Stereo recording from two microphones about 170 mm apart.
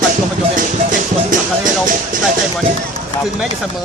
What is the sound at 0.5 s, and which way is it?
Music, 50° right (ahead or behind).